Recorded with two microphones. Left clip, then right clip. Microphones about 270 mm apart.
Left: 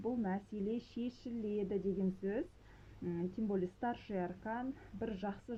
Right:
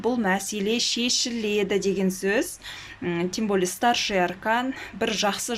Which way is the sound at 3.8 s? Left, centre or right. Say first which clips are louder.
Right 19 dB; centre.